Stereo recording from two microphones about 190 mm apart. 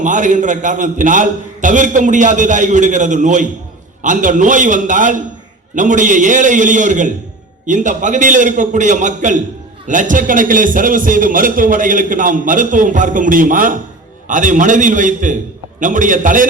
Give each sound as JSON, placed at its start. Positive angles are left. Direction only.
{"t": 0.0, "sound": "a man's voice", "side_deg": -40}